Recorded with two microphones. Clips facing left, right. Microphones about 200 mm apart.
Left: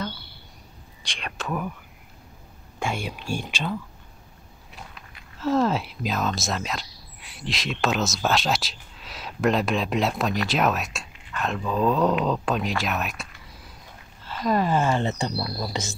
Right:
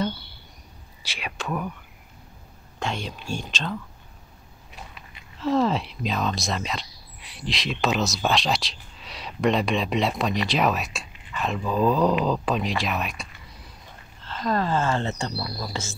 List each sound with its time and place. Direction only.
1.0 s a sound: 5° right (ahead or behind)
2.8 s speech: 10° left (ahead or behind)
4.7 s speech: centre (ahead or behind); by 15.9 s 20° left (ahead or behind)